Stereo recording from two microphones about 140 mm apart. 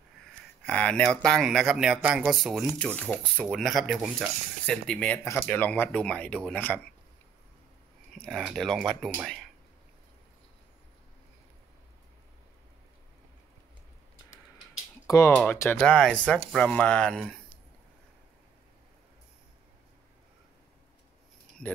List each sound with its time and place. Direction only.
0.7 s speech: 10° left (ahead or behind)
3.0 s speech: 10° left (ahead or behind)
3.4 s speech: centre (ahead or behind)
4.6 s speech: 5° left (ahead or behind)
8.1 s speech: centre (ahead or behind)
15.0 s speech: 20° left (ahead or behind)